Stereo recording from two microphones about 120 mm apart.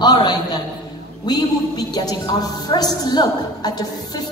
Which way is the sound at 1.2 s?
35° left (ahead or behind).